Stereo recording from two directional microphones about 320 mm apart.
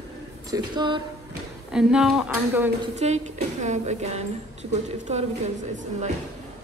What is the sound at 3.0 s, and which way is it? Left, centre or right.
Music, centre.